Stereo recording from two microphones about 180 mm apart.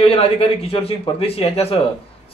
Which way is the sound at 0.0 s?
30° left (ahead or behind).